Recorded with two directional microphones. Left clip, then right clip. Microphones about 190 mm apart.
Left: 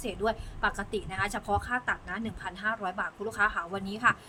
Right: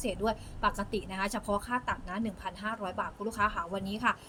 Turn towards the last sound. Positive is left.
turn(degrees=20)  # may be behind; listen again after turning